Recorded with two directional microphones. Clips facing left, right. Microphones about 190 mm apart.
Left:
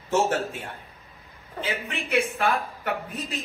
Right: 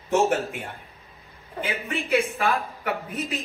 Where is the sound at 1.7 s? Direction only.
Centre (ahead or behind).